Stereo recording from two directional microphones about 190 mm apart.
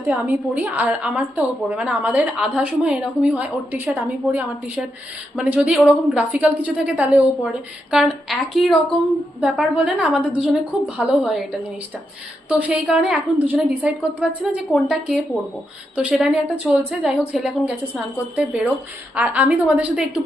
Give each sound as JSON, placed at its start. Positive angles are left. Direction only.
{"t": 0.0, "sound": "a woman's voice", "side_deg": -10}
{"t": 12.5, "sound": "a woman's voice", "side_deg": -5}